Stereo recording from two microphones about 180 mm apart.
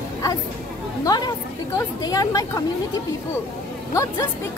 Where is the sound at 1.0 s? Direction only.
20° left (ahead or behind).